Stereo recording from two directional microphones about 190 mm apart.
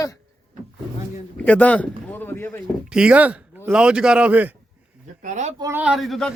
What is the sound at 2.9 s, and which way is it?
Speech, 5° right (ahead or behind).